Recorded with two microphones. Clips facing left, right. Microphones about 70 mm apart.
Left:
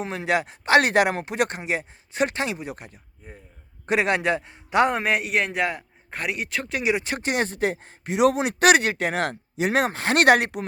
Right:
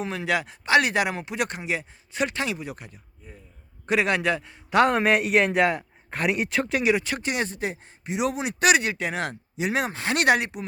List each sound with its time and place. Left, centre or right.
0.0 s a man's voice: left
4.7 s a man's voice: centre
7.0 s speech: left